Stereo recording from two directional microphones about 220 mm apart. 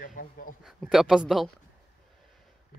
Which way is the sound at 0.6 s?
Centre (ahead or behind).